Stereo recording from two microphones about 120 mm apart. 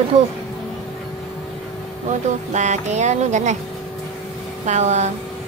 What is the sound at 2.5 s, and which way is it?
Music, 80° right.